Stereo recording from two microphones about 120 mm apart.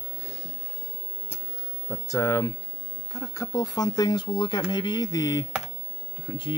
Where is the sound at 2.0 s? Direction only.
20° left (ahead or behind).